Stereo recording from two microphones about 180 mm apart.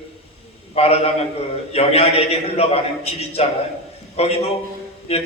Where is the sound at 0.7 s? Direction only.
35° left (ahead or behind).